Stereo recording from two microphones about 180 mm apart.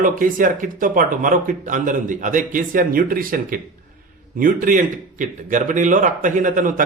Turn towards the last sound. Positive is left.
turn(degrees=-45)  # may be behind; listen again after turning